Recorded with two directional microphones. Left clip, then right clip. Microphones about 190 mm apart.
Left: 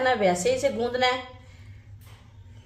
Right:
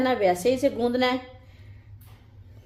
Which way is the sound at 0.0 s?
35° right (ahead or behind).